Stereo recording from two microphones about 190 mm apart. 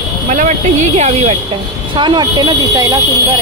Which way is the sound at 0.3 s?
40° right (ahead or behind).